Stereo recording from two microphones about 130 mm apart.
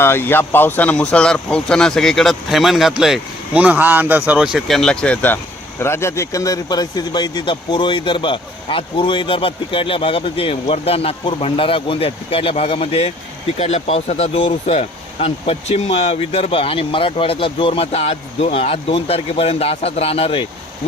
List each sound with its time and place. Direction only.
0.0 s speech: 15° left (ahead or behind); by 20.5 s 45° left (ahead or behind)